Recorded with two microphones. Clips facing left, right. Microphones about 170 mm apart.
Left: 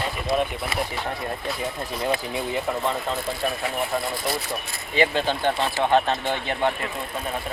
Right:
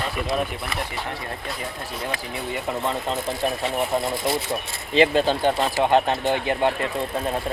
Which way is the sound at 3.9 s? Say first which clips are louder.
Right 3 dB; 25° right (ahead or behind).